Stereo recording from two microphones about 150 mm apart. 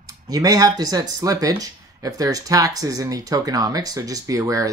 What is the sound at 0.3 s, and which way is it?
Speech, 25° right (ahead or behind).